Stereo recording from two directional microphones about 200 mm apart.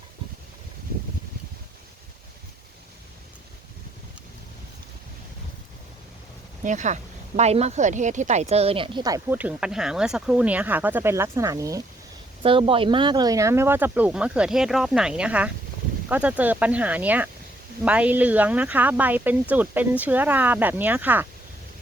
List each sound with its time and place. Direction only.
6.7 s speech: 35° right (ahead or behind); by 21.2 s 10° right (ahead or behind)